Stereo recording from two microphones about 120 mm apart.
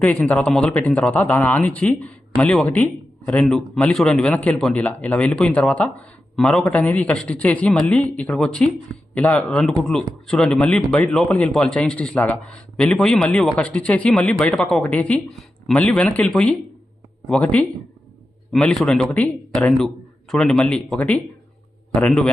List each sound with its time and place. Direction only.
0.0 s a man's voice: 5° left (ahead or behind)